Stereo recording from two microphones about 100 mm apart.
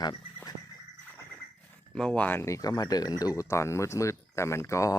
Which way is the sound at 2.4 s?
35° left (ahead or behind).